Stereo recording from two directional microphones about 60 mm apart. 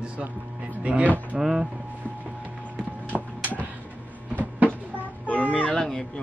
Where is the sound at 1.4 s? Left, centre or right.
Centre.